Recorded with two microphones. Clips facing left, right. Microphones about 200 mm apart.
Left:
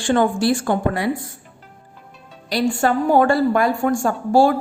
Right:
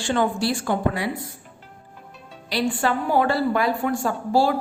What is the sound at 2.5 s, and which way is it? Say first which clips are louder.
A woman's voice: left 4 dB; 45° left (ahead or behind).